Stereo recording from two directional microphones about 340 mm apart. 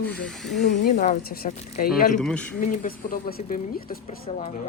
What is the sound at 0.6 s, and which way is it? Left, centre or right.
Speech, left.